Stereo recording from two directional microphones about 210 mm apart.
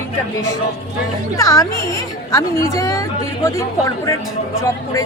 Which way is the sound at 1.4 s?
15° left (ahead or behind).